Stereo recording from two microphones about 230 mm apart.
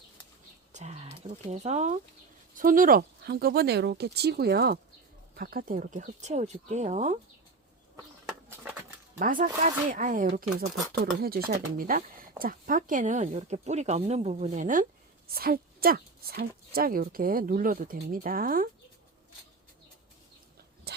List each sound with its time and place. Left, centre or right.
0.7 s a sound: right
2.6 s speech: right
8.3 s bird: centre
9.1 s speech: right
20.9 s dog: right